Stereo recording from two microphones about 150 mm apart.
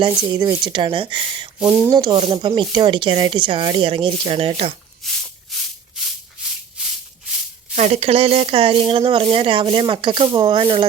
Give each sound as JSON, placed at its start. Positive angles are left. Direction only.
{"t": 0.0, "sound": "speech", "side_deg": -25}
{"t": 1.5, "sound": "speech", "side_deg": -10}
{"t": 2.0, "sound": "speech", "side_deg": -30}
{"t": 5.0, "sound": "a sound", "side_deg": 0}
{"t": 7.8, "sound": "speech", "side_deg": -45}